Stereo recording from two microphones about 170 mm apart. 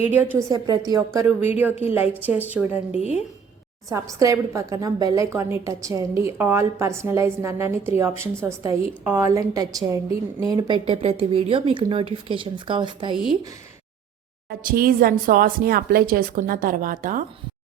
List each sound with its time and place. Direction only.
0.0 s a woman's voice: 10° right (ahead or behind)
3.8 s a woman's voice: 20° right (ahead or behind)
14.6 s a woman's voice: 55° right (ahead or behind)